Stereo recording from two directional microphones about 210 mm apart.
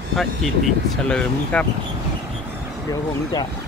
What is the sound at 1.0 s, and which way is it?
Speech, 5° left (ahead or behind).